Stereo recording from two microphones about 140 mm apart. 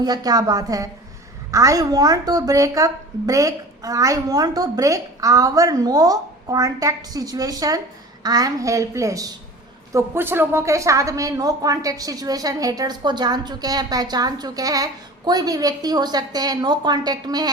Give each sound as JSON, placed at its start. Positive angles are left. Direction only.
{"t": 0.0, "sound": "a woman's voice", "side_deg": -30}